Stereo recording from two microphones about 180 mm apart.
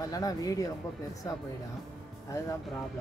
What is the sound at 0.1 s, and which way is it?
Speech, 20° left (ahead or behind).